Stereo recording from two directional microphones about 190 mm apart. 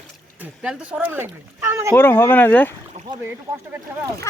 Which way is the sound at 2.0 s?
10° left (ahead or behind).